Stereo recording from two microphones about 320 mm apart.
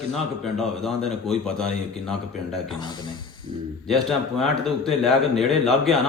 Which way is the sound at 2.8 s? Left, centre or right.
Centre.